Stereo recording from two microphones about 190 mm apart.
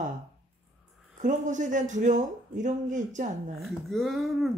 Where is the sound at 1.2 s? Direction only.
40° right (ahead or behind).